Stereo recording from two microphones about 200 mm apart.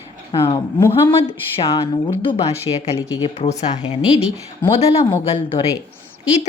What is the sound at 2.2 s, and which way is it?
Speech, 25° left (ahead or behind).